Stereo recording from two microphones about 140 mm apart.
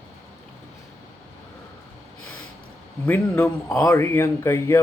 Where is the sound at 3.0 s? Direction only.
15° left (ahead or behind).